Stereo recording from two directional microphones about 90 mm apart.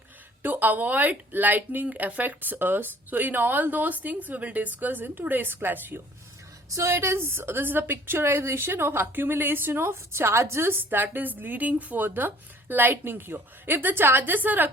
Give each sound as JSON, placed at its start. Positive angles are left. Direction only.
{"t": 0.4, "sound": "a woman's voice", "side_deg": -20}
{"t": 6.7, "sound": "a woman's voice", "side_deg": -30}